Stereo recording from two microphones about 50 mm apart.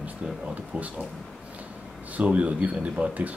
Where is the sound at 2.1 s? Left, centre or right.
Right.